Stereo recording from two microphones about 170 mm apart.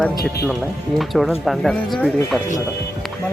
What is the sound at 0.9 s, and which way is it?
Speech, centre (ahead or behind).